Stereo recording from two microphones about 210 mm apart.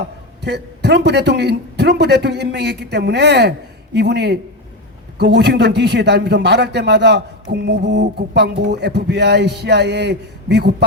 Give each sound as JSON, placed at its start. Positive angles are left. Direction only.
{"t": 0.4, "sound": "a man's voice", "side_deg": -55}